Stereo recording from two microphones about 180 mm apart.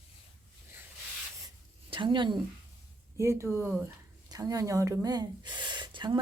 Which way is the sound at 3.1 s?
15° right (ahead or behind).